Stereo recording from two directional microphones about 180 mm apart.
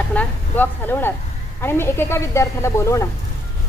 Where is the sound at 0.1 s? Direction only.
10° left (ahead or behind).